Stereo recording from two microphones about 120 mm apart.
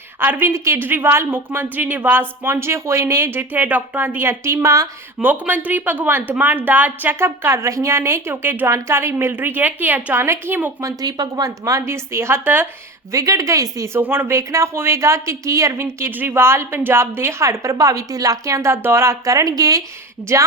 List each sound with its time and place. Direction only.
0.2 s speech: 15° right (ahead or behind)
5.2 s speech: 15° right (ahead or behind)
10.8 s speech: 35° right (ahead or behind)